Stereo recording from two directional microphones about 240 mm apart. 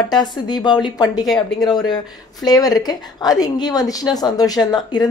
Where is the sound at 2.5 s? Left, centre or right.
Centre.